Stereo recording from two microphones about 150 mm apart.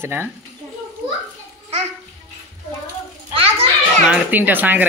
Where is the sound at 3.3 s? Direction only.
40° right (ahead or behind).